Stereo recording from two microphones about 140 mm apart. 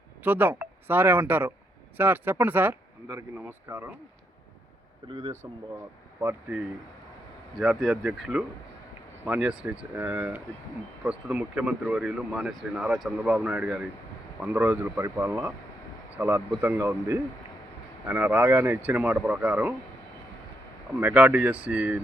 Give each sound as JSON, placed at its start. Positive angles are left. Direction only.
{"t": 0.2, "sound": "speech", "side_deg": -15}
{"t": 5.0, "sound": "speech", "side_deg": -35}
{"t": 6.1, "sound": "speech", "side_deg": -15}
{"t": 7.5, "sound": "speech", "side_deg": 0}
{"t": 20.9, "sound": "speech", "side_deg": -10}